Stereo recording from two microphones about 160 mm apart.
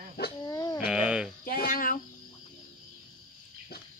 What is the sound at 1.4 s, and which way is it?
Speech, 65° left (ahead or behind).